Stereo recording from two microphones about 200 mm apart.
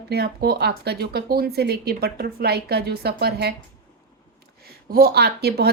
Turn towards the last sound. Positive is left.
turn(degrees=-55)  # may be behind; listen again after turning